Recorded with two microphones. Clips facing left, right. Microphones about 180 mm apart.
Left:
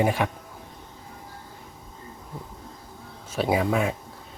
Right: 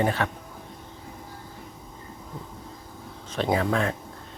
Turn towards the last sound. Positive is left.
turn(degrees=10)  # may be behind; listen again after turning